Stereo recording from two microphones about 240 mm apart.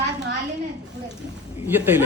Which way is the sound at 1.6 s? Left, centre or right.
Centre.